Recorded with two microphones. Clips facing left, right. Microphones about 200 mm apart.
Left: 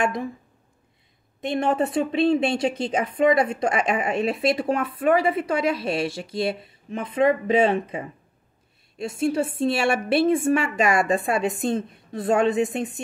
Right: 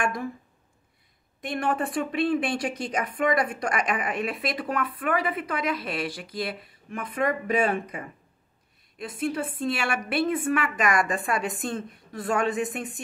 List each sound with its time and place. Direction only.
0.0 s speech: 20° left (ahead or behind)
1.4 s speech: 25° left (ahead or behind)